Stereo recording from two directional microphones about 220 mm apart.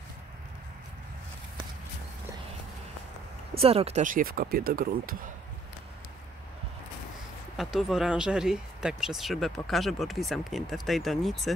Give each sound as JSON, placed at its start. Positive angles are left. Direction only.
{"t": 3.5, "sound": "speech", "side_deg": -25}
{"t": 7.5, "sound": "speech", "side_deg": 0}